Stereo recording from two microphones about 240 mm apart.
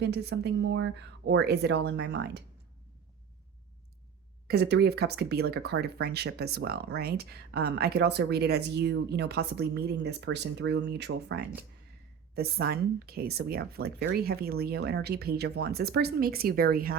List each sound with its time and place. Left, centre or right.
0.0 s speech: right
4.4 s speech: right